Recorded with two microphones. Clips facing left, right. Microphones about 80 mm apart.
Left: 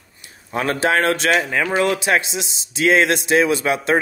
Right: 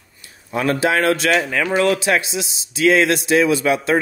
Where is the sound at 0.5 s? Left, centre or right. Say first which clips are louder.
Right 1 dB; left.